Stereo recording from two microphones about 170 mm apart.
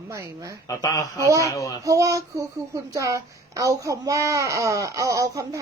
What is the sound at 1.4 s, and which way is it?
Speech, 20° left (ahead or behind).